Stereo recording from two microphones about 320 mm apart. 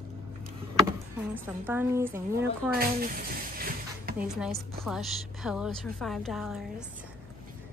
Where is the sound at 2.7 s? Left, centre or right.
Right.